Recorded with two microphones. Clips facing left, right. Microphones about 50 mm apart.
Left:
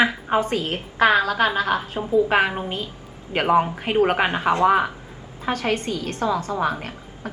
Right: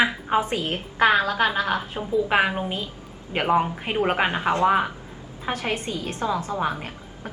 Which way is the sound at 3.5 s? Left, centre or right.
Centre.